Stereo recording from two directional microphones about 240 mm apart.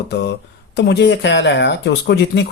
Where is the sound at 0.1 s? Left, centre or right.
Left.